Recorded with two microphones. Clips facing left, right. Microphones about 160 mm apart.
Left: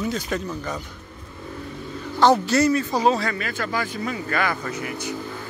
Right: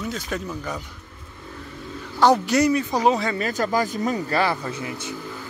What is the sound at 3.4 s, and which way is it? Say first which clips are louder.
Speech: right 4 dB; 40° right (ahead or behind).